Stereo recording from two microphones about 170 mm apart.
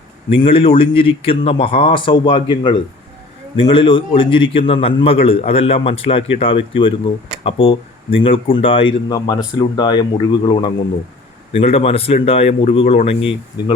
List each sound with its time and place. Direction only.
0.4 s a man's voice: 30° left (ahead or behind)